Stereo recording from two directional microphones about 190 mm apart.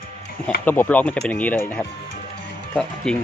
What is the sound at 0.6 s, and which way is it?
Speech, 10° left (ahead or behind).